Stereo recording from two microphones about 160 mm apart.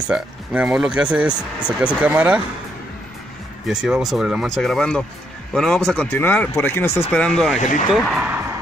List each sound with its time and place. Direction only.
0.1 s speech: 5° right (ahead or behind)
3.6 s speech: 5° right (ahead or behind)
7.5 s speech: 50° left (ahead or behind)
7.9 s speech: centre (ahead or behind)
8.3 s music: 20° right (ahead or behind)